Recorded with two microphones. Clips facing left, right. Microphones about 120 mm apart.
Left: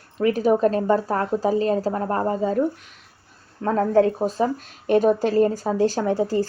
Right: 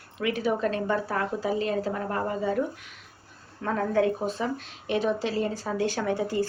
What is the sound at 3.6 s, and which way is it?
A woman's voice, 35° left (ahead or behind).